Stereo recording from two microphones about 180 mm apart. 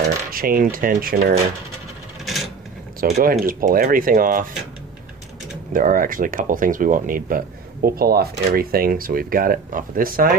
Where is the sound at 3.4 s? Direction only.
50° right (ahead or behind).